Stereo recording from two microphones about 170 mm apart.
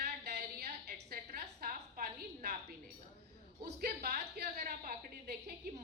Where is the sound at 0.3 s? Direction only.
70° right (ahead or behind).